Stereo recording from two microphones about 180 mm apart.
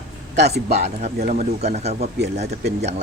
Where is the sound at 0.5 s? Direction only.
40° right (ahead or behind).